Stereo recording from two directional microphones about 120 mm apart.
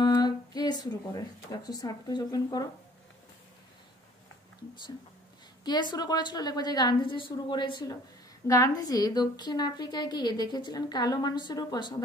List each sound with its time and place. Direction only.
0.0 s speech: 35° left (ahead or behind)
5.6 s a woman's voice: 35° left (ahead or behind)